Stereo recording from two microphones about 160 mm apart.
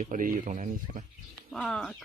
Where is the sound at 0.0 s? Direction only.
55° right (ahead or behind).